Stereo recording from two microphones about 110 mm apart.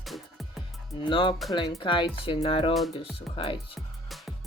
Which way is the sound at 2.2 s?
60° left (ahead or behind).